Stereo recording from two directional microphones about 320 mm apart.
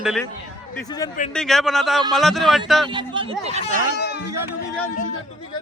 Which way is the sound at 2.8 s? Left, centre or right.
Centre.